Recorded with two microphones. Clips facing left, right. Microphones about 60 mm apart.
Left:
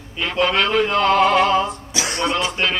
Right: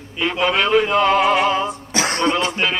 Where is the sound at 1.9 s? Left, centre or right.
Right.